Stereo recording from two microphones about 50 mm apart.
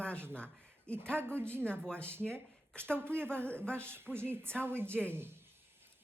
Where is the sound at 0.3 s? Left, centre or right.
Left.